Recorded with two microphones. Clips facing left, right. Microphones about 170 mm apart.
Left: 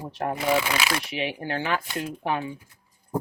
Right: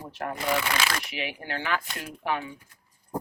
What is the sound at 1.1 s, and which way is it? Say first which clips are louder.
Speech: left 5 dB; 30° left (ahead or behind).